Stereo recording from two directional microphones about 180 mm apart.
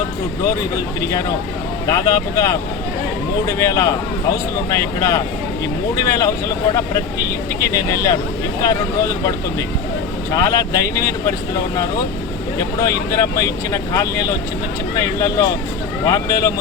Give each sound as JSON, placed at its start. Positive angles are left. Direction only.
{"t": 1.9, "sound": "speech", "side_deg": 20}
{"t": 10.3, "sound": "speech", "side_deg": 20}
{"t": 12.5, "sound": "speech", "side_deg": 20}